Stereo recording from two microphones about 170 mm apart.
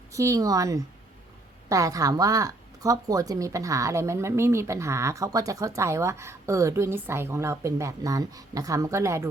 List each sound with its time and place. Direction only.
0.1 s speech: 20° right (ahead or behind)